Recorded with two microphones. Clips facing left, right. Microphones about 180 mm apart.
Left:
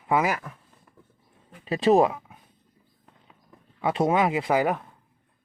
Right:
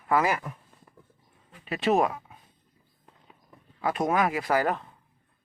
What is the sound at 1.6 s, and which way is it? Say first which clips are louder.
Speech: left 5 dB; 35° left (ahead or behind).